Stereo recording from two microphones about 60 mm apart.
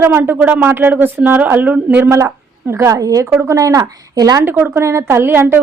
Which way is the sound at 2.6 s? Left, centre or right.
Right.